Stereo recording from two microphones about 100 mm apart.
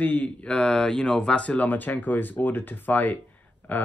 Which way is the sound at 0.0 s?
15° left (ahead or behind).